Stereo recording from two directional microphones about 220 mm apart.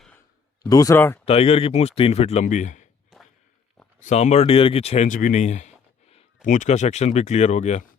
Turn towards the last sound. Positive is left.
turn(degrees=30)  # may be behind; listen again after turning